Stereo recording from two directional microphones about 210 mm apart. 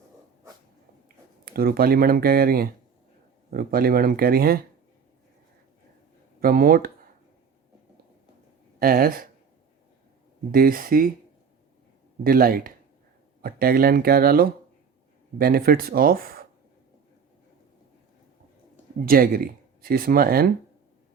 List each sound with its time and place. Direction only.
1.0 s speech: 45° right (ahead or behind)
6.4 s speech: 45° right (ahead or behind)
8.8 s speech: 45° right (ahead or behind)
10.5 s speech: 45° right (ahead or behind)
12.2 s speech: 45° right (ahead or behind)
19.0 s speech: 45° right (ahead or behind)